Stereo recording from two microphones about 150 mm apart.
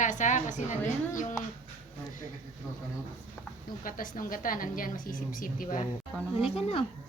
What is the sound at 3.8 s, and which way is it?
A woman's voice, 65° left (ahead or behind).